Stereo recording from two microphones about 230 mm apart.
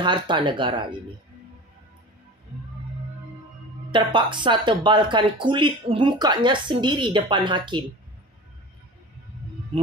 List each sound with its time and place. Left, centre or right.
0.0 s speech: right
3.9 s speech: right